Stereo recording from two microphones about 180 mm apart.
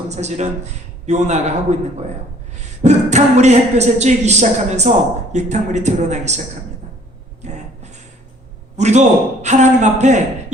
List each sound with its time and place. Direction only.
0.1 s a woman's voice: 40° right (ahead or behind)
2.6 s a woman's voice: 40° right (ahead or behind)
7.4 s a sound: 40° right (ahead or behind)
8.7 s a woman's voice: 40° right (ahead or behind)